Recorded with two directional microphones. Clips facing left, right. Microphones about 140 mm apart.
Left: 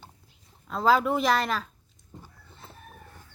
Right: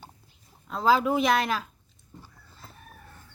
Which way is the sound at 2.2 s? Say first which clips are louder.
Right 1 dB; 25° left (ahead or behind).